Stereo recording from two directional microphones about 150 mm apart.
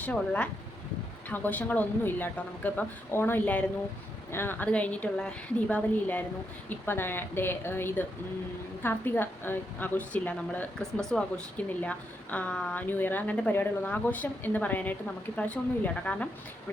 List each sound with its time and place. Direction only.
0.0 s a woman's voice: 10° left (ahead or behind)